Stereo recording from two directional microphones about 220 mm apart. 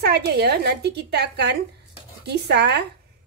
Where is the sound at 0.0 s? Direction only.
45° right (ahead or behind).